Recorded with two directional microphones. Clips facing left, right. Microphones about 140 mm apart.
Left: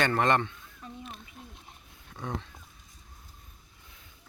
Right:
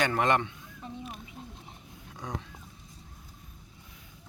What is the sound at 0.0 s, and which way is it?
Speech, 10° right (ahead or behind).